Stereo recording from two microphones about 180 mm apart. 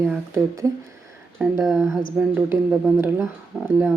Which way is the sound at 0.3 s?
15° right (ahead or behind).